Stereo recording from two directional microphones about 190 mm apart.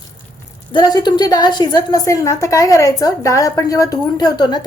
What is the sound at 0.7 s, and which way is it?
A woman's voice, 25° left (ahead or behind).